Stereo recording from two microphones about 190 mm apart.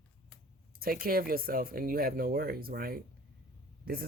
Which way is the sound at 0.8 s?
50° right (ahead or behind).